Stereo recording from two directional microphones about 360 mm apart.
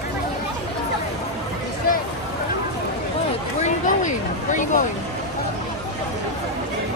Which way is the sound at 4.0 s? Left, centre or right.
Left.